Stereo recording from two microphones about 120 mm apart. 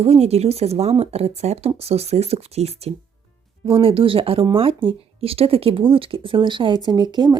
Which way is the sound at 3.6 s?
50° right (ahead or behind).